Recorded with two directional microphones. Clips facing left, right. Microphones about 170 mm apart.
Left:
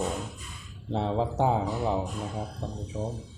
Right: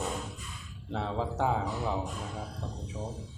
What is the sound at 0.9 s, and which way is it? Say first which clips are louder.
Speech: left 5 dB; 25° left (ahead or behind).